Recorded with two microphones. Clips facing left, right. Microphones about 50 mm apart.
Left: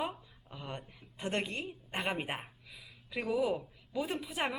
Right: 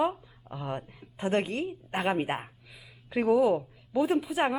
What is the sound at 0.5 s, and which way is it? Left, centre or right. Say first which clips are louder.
Speech: right 8 dB; centre.